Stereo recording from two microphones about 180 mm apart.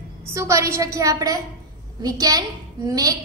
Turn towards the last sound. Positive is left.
turn(degrees=-20)  # may be behind; listen again after turning